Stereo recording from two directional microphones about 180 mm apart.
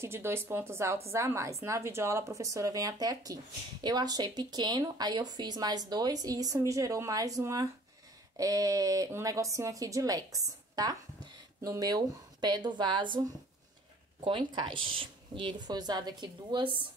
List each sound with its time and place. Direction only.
0.0 s a woman's voice: 15° right (ahead or behind)
14.5 s a woman's voice: 25° right (ahead or behind)